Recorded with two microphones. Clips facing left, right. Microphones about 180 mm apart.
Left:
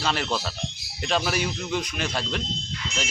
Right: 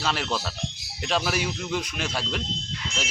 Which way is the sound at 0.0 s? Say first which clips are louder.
Left 1 dB; centre (ahead or behind).